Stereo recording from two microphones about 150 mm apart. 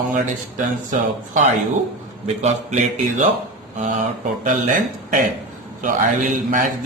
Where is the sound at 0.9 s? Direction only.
55° right (ahead or behind).